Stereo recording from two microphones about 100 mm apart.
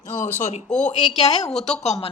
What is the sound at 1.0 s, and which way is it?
A woman's voice, 90° left.